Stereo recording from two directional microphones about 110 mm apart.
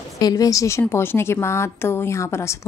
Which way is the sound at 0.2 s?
35° left (ahead or behind).